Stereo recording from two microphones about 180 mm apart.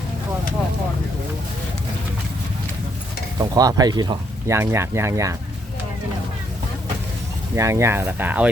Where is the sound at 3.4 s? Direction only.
20° right (ahead or behind).